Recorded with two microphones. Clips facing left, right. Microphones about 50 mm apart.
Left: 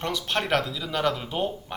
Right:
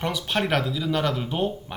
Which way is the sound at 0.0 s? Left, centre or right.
Centre.